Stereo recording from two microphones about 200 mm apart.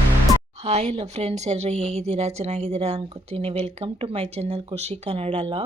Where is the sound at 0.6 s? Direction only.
35° right (ahead or behind).